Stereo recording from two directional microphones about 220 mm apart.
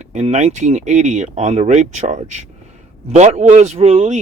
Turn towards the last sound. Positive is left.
turn(degrees=-30)  # may be behind; listen again after turning